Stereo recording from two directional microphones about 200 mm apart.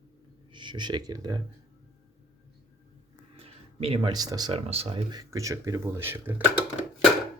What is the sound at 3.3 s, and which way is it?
Speech, 30° right (ahead or behind).